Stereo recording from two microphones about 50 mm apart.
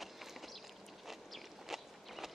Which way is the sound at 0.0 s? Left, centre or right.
Centre.